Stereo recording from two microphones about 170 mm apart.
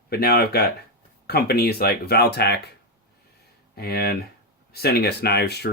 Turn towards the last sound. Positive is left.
turn(degrees=75)  # may be behind; listen again after turning